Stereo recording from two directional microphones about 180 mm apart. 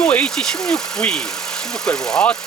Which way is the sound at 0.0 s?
10° left (ahead or behind).